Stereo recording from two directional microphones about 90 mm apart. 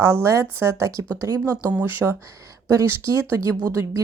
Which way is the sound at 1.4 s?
20° right (ahead or behind).